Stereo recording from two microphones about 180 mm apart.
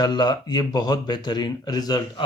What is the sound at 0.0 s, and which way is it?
Speech, 25° left (ahead or behind).